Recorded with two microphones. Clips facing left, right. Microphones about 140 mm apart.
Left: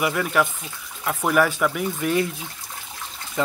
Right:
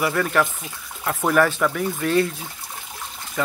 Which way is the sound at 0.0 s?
10° left (ahead or behind).